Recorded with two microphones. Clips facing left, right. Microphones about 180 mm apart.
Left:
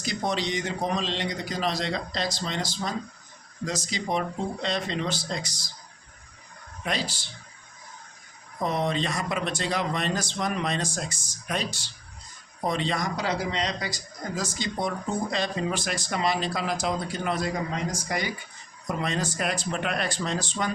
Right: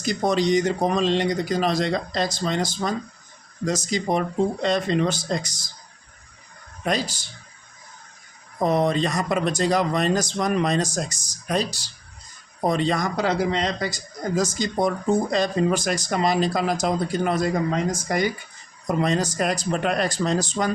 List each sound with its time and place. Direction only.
0.0 s a man's voice: 45° right (ahead or behind)
6.8 s a man's voice: 45° right (ahead or behind)
8.5 s a man's voice: 45° right (ahead or behind)
18.9 s speech: 40° right (ahead or behind)